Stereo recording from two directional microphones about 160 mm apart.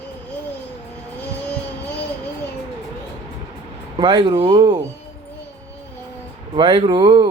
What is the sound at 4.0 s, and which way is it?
Speech, 35° right (ahead or behind).